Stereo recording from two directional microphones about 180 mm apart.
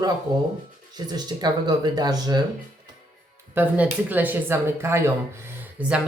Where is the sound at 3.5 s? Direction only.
10° right (ahead or behind).